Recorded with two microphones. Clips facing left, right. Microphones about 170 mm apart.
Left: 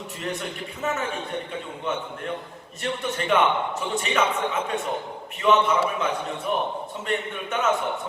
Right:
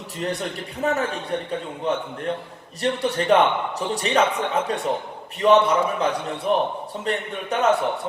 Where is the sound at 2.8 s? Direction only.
35° right (ahead or behind).